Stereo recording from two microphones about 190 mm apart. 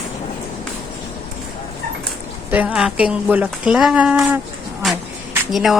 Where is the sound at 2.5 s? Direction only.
10° right (ahead or behind).